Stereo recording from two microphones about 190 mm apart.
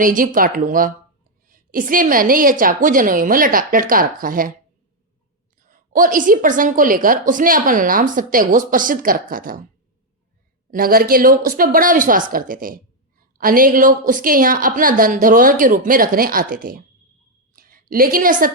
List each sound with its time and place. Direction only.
0.0 s a woman's voice: 45° right (ahead or behind)
5.5 s a woman's voice: 45° right (ahead or behind)
10.7 s a woman's voice: 50° right (ahead or behind)
17.5 s a sound: 50° right (ahead or behind)